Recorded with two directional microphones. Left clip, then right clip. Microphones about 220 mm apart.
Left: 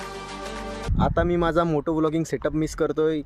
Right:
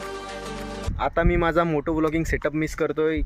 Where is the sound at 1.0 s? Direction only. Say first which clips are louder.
Even; 5° left (ahead or behind).